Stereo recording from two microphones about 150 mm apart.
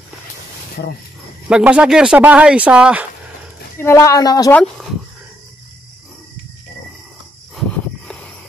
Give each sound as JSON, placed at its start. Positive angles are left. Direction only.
{"t": 1.5, "sound": "speech", "side_deg": -5}
{"t": 3.7, "sound": "speech", "side_deg": 20}